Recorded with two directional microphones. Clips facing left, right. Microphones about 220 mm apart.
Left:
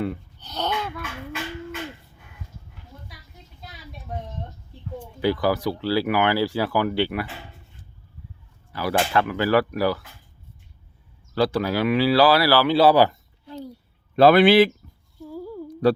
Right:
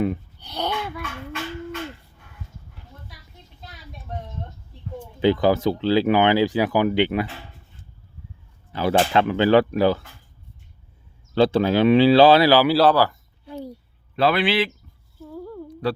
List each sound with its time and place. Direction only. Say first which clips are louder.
0.0 s a sound: right 4 dB; 15° right (ahead or behind)
5.2 s speech: right 4 dB; 20° right (ahead or behind)
8.7 s speech: right 3 dB; 25° right (ahead or behind)
11.3 s speech: right 4 dB; 25° right (ahead or behind)
12.9 s speech: left 2 dB; 20° left (ahead or behind)
14.2 s speech: left 7 dB; 45° left (ahead or behind)
15.2 s a sound: left 1 dB; 5° left (ahead or behind)
15.8 s speech: left 6 dB; 45° left (ahead or behind)